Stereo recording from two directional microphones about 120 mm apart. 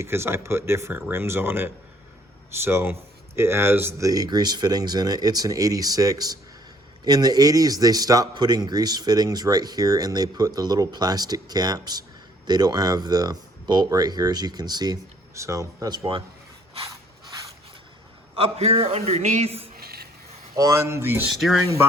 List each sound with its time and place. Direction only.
0.0 s speech: 20° right (ahead or behind)
18.3 s a man's voice: 55° right (ahead or behind)
20.6 s speech: 25° right (ahead or behind)
21.2 s speech: centre (ahead or behind)